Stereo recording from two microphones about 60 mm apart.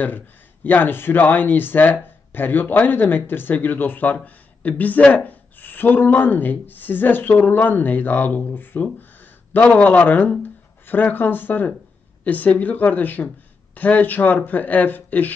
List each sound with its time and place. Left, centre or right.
0.7 s speech: left